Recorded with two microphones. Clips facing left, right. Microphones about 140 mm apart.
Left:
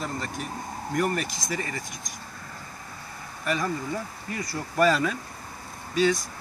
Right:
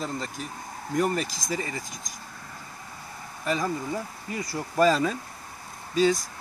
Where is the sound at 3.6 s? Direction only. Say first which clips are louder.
Even; 15° right (ahead or behind).